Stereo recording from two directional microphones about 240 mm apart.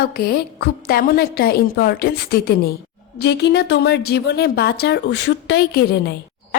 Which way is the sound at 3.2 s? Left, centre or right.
Left.